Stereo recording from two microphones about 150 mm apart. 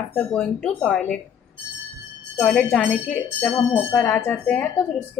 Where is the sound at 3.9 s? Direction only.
15° left (ahead or behind).